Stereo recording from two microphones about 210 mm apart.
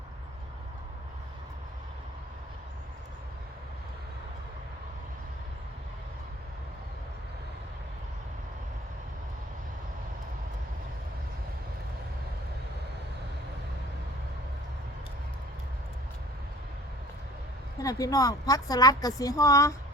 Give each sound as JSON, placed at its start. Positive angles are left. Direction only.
{"t": 17.8, "sound": "speech", "side_deg": 15}